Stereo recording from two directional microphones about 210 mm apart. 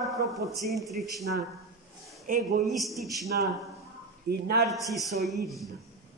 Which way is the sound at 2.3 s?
40° right (ahead or behind).